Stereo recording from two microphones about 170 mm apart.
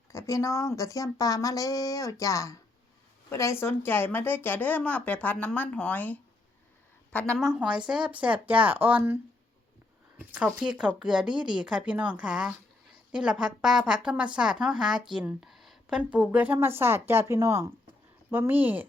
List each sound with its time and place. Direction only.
0.1 s a woman's voice: 20° left (ahead or behind)
7.4 s a woman's voice: 5° right (ahead or behind)
10.2 s a woman's voice: 5° right (ahead or behind)